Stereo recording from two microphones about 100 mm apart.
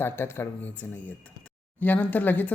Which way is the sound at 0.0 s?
25° left (ahead or behind).